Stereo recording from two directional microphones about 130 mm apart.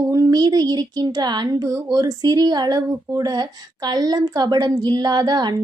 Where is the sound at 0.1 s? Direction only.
30° right (ahead or behind).